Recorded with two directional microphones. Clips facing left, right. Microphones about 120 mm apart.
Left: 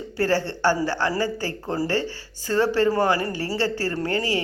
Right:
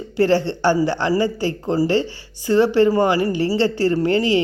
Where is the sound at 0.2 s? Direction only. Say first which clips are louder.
Right 5 dB; 20° right (ahead or behind).